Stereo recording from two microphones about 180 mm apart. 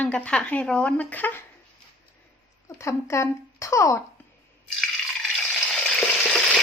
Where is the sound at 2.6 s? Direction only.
15° left (ahead or behind).